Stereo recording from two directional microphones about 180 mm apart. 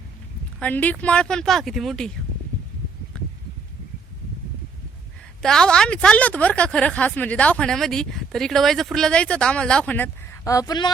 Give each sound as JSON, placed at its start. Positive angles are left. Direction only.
{"t": 0.6, "sound": "speech", "side_deg": 10}
{"t": 5.4, "sound": "speech", "side_deg": 5}